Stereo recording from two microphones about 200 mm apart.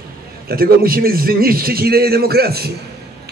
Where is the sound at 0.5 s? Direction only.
45° right (ahead or behind).